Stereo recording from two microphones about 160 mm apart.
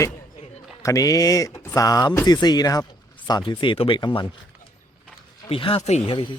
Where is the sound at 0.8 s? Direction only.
20° left (ahead or behind).